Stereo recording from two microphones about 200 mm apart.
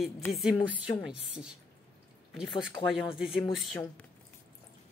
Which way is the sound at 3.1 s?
Centre (ahead or behind).